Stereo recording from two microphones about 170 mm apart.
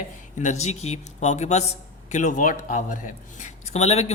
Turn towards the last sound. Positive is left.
turn(degrees=40)  # may be behind; listen again after turning